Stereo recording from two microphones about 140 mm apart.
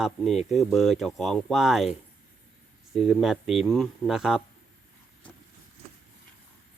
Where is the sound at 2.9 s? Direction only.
5° right (ahead or behind).